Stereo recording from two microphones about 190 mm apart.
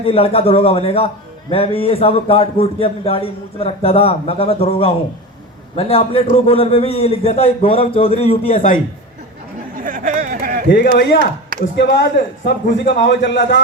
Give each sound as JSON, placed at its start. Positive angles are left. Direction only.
{"t": 0.0, "sound": "a man's voice", "side_deg": 30}
{"t": 9.7, "sound": "a sound", "side_deg": -45}
{"t": 10.9, "sound": "a man's voice", "side_deg": 65}